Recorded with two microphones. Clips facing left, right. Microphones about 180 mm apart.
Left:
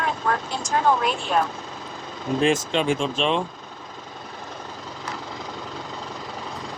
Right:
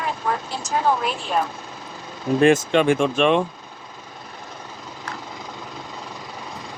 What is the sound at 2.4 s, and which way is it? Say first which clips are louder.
Speech: right 6 dB; 60° right (ahead or behind).